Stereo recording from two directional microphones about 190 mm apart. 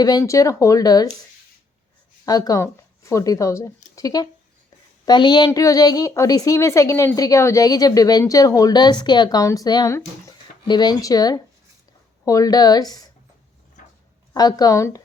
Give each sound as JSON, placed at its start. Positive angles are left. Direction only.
{"t": 0.0, "sound": "speech", "side_deg": 20}
{"t": 2.2, "sound": "a woman's voice", "side_deg": 20}
{"t": 14.3, "sound": "a woman's voice", "side_deg": 20}